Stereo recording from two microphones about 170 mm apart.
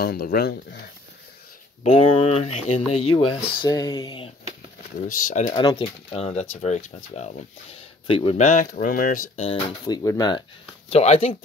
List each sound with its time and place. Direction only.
0.0 s speech: 65° left (ahead or behind)
1.8 s speech: 35° left (ahead or behind)
5.5 s speech: 25° left (ahead or behind); by 9.3 s 50° left (ahead or behind)
9.4 s speech: 30° left (ahead or behind)
10.9 s speech: 40° left (ahead or behind)